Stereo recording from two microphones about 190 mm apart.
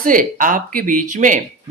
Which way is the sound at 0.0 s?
45° right (ahead or behind).